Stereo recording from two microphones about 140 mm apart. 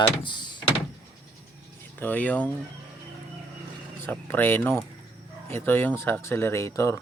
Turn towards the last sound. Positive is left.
turn(degrees=20)  # may be behind; listen again after turning